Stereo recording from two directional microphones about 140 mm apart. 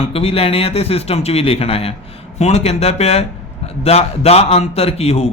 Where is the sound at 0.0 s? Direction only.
45° left (ahead or behind).